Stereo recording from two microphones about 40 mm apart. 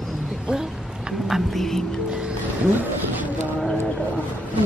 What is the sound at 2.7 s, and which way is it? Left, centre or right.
Vehicle, right.